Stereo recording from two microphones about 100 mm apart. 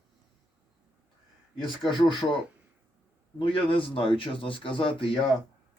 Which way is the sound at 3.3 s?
60° left (ahead or behind).